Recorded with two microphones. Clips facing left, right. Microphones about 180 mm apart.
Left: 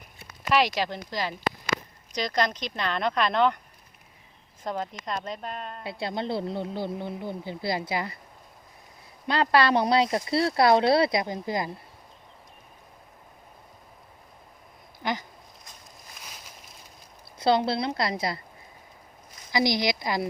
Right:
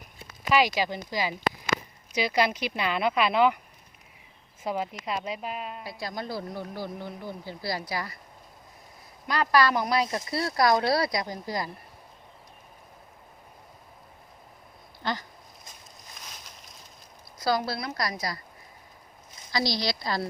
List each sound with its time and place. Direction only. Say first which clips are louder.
0.5 s a woman's voice: even; centre (ahead or behind)
4.6 s a woman's voice: right 1 dB; 5° right (ahead or behind)
5.8 s speech: left 4 dB; 25° left (ahead or behind)
9.2 s speech: left 1 dB; 25° left (ahead or behind)
15.0 s a sound: left 2 dB; 15° left (ahead or behind)
17.4 s speech: left 4 dB; 25° left (ahead or behind)
19.5 s speech: left 4 dB; 20° left (ahead or behind)